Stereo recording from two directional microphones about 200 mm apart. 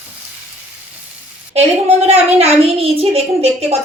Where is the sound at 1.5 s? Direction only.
30° right (ahead or behind).